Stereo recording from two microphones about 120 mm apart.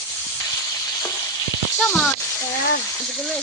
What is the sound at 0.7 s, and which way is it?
Frying, 25° left (ahead or behind).